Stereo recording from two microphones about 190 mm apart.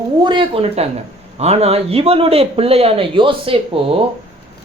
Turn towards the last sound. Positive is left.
turn(degrees=-30)  # may be behind; listen again after turning